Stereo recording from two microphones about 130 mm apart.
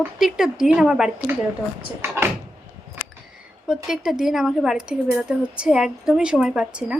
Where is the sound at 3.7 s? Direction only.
5° right (ahead or behind).